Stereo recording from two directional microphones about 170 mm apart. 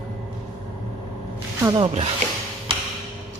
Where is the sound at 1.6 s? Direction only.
30° right (ahead or behind).